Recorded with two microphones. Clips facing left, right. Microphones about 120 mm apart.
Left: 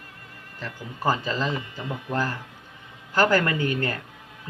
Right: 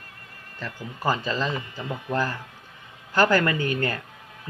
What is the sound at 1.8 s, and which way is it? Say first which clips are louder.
Speech: right 3 dB; 20° right (ahead or behind).